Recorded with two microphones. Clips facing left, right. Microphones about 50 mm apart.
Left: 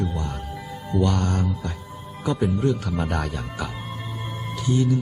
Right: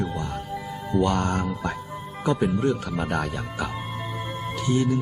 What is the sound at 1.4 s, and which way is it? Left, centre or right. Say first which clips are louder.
Speech: right 2 dB; right.